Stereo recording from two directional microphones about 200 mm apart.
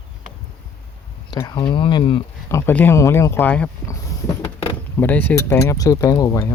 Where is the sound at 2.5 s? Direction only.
10° left (ahead or behind).